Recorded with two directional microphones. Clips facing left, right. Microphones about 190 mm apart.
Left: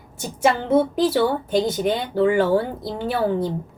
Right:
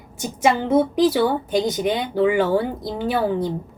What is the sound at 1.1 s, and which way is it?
A woman's voice, 5° left (ahead or behind).